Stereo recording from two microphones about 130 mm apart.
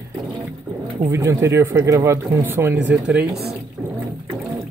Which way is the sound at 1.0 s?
25° right (ahead or behind).